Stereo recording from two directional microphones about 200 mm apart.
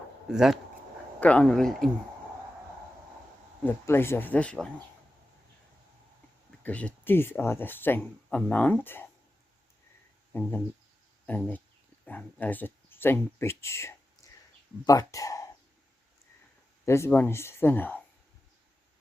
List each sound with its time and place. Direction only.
0.3 s speech: centre (ahead or behind)
3.6 s speech: 10° left (ahead or behind)
6.6 s speech: 5° left (ahead or behind)
10.3 s speech: 10° left (ahead or behind)
14.2 s a sound: 15° left (ahead or behind)
14.8 s speech: 15° left (ahead or behind)
16.8 s speech: 15° left (ahead or behind)